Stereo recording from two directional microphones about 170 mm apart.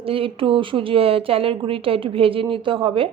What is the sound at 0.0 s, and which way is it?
A woman's voice, 30° right (ahead or behind).